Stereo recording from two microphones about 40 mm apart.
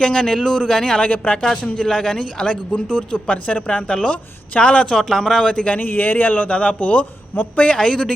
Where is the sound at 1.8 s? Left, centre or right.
Centre.